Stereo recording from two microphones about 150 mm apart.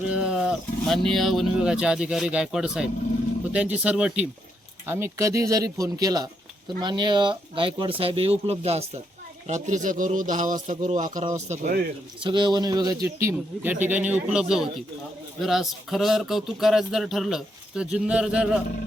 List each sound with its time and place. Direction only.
0.1 s a man's voice: 5° right (ahead or behind); by 8.8 s 45° right (ahead or behind)
9.5 s a man's voice: 55° right (ahead or behind)
12.2 s a man's voice: 30° right (ahead or behind); by 18.6 s 5° right (ahead or behind)